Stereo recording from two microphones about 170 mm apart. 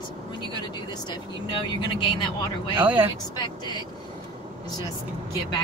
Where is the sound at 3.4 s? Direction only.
25° left (ahead or behind).